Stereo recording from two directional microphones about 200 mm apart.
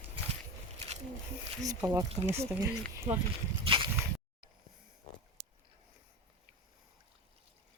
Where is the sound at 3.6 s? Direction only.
25° right (ahead or behind).